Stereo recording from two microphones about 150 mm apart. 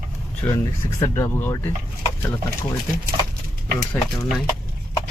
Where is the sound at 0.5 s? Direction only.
20° left (ahead or behind).